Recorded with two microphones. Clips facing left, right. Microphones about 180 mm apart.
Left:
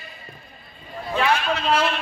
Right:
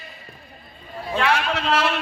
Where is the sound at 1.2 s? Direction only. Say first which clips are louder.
Even; 85° right.